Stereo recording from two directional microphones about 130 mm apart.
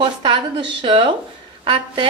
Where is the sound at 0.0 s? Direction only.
40° right (ahead or behind).